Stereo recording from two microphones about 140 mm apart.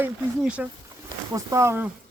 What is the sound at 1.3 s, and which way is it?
Speech, 20° right (ahead or behind).